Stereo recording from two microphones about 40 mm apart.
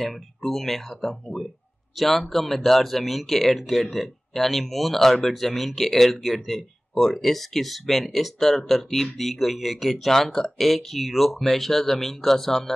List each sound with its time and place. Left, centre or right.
0.0 s speech: centre